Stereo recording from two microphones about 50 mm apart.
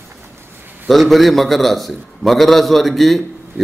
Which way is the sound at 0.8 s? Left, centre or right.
Centre.